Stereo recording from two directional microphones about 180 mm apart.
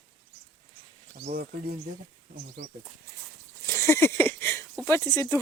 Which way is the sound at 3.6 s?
15° left (ahead or behind).